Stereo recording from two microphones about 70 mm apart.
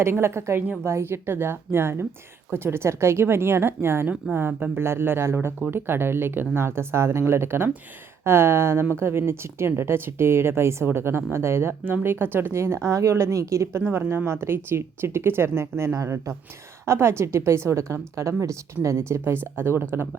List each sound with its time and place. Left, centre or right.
0.0 s a woman's voice: right
13.8 s a woman's voice: right